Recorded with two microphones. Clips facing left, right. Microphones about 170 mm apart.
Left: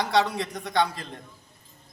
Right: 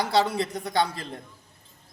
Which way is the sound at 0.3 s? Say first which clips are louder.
Even; 30° right (ahead or behind).